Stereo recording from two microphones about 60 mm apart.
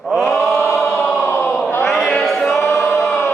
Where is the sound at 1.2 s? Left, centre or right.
Left.